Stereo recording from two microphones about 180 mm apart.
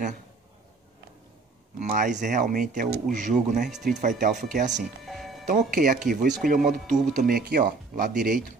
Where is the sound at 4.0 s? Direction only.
45° right (ahead or behind).